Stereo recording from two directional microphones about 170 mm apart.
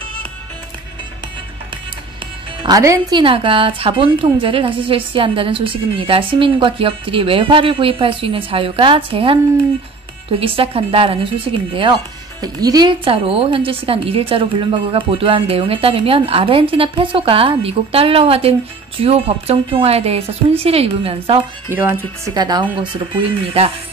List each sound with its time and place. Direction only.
2.6 s speech: 20° right (ahead or behind)
3.2 s speech: 30° right (ahead or behind)
10.4 s speech: 30° right (ahead or behind)
21.6 s speech: 15° right (ahead or behind)
22.3 s speech: 25° right (ahead or behind)